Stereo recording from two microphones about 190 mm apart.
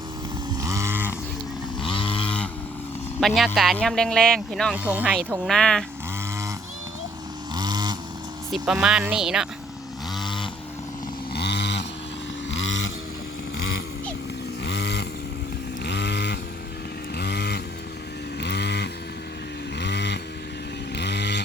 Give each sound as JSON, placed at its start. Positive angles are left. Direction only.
{"t": 0.6, "sound": "a sound", "side_deg": -15}
{"t": 1.8, "sound": "chainsaw", "side_deg": 25}
{"t": 3.2, "sound": "speech", "side_deg": 0}
{"t": 4.8, "sound": "speech", "side_deg": -10}
{"t": 7.5, "sound": "vehicle", "side_deg": -20}
{"t": 8.8, "sound": "speech", "side_deg": -5}
{"t": 10.2, "sound": "vehicle", "side_deg": 25}
{"t": 11.3, "sound": "a sound", "side_deg": 60}
{"t": 12.5, "sound": "vehicle", "side_deg": 80}
{"t": 14.6, "sound": "vehicle", "side_deg": 65}
{"t": 15.8, "sound": "chainsaw", "side_deg": 60}
{"t": 17.2, "sound": "vehicle", "side_deg": 60}
{"t": 20.9, "sound": "chainsaw", "side_deg": 60}